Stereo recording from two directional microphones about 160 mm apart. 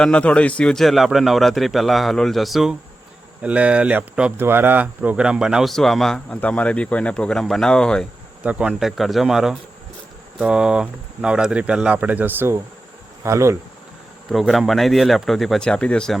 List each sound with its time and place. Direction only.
0.0 s speech: 5° left (ahead or behind)
8.4 s speech: 5° right (ahead or behind)
14.3 s speech: centre (ahead or behind)